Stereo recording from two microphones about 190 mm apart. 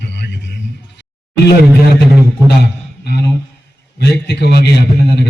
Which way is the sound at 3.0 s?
60° left (ahead or behind).